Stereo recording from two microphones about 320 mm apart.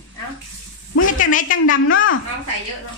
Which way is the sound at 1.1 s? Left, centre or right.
Left.